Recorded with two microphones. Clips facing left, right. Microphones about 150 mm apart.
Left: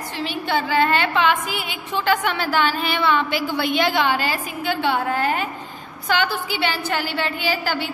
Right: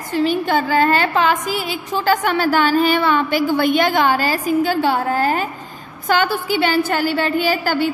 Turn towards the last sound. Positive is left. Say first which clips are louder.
# right 6 dB
turn(degrees=-45)  # may be behind; listen again after turning